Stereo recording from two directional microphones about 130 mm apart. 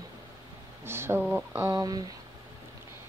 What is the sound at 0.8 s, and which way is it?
Speech, 20° right (ahead or behind).